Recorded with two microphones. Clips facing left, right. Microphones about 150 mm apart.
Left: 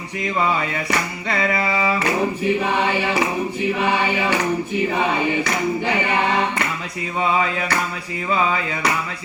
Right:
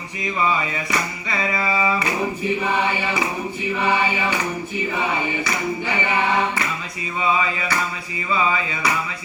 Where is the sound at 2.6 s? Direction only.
65° left (ahead or behind).